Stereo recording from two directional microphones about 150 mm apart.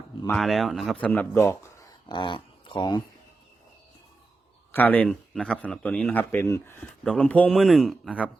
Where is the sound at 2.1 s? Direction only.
30° left (ahead or behind).